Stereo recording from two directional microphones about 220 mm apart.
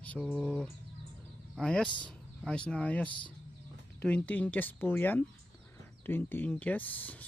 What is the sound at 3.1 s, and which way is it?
Speech, 20° left (ahead or behind).